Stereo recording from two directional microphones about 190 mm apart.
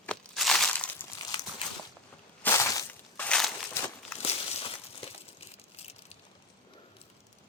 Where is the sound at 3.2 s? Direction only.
5° left (ahead or behind).